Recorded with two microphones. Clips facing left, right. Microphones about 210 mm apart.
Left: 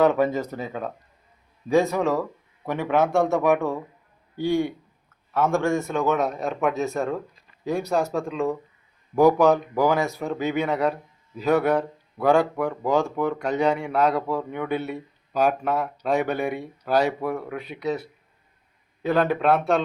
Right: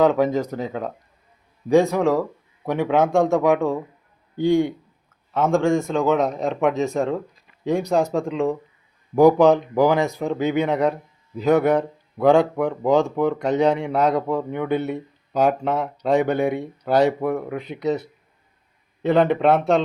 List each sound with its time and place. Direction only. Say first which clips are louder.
0.0 s speech: right 2 dB; 15° right (ahead or behind)
19.0 s speech: right 4 dB; 20° right (ahead or behind)